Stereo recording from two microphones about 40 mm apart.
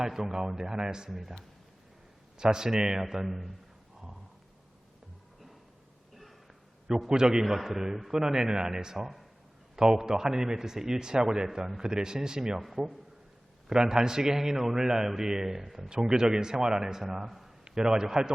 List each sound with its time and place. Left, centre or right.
0.0 s a man's voice: centre
2.4 s a man's voice: centre
7.1 s a man's voice: centre
9.0 s speech: centre
9.7 s a man's voice: centre
16.1 s a man's voice: centre
17.7 s a man's voice: centre